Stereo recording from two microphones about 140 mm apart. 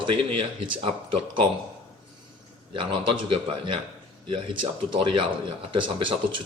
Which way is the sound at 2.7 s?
40° right (ahead or behind).